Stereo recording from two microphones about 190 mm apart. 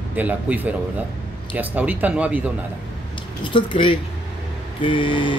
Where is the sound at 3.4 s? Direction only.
25° left (ahead or behind).